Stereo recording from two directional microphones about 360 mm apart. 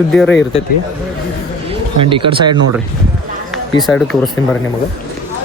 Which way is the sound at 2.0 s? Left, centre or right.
Centre.